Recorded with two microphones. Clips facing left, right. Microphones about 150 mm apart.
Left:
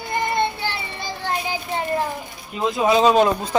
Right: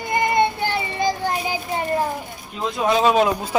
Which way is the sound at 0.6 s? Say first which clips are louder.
Right 7 dB; 45° right (ahead or behind).